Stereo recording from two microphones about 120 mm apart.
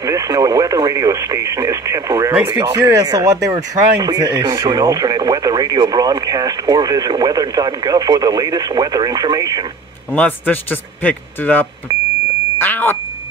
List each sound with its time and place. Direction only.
0.0 s speech: 30° right (ahead or behind)
10.1 s a man's voice: 15° left (ahead or behind)
12.5 s a sound: 15° left (ahead or behind)